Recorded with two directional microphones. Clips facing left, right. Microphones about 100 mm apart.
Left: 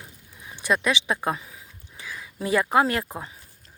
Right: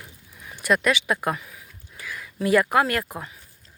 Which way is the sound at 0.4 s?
25° left (ahead or behind).